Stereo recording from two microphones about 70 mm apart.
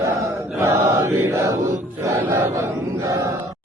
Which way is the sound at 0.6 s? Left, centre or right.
Right.